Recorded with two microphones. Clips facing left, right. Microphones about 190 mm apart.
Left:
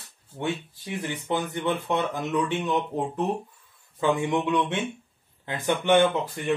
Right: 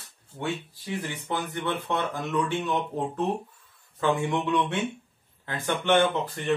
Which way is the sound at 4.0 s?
15° left (ahead or behind).